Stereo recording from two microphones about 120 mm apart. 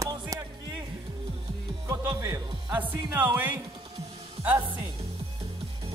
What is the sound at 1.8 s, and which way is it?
A man's voice, 25° right (ahead or behind).